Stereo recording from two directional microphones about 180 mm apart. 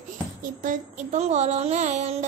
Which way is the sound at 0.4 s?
45° right (ahead or behind).